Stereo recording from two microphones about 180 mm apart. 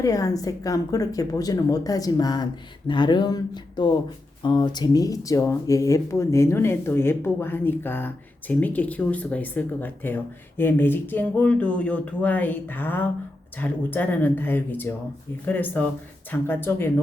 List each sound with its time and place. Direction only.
0.0 s speech: 20° left (ahead or behind)